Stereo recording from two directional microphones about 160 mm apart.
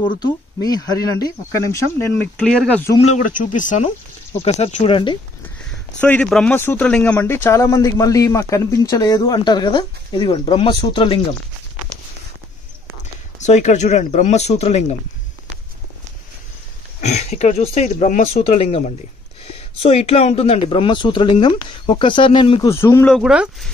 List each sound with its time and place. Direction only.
0.2 s speech: 25° left (ahead or behind)
3.1 s speech: 55° left (ahead or behind); by 5.2 s 30° left (ahead or behind)
5.9 s speech: 10° left (ahead or behind); by 11.1 s 30° left (ahead or behind)
13.4 s speech: 45° left (ahead or behind)
17.0 s speech: 45° left (ahead or behind)
22.7 s speech: 15° left (ahead or behind)
23.1 s speech: 5° right (ahead or behind)